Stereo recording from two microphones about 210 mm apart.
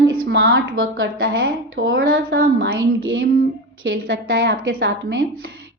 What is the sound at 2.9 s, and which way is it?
A woman's voice, 70° right (ahead or behind).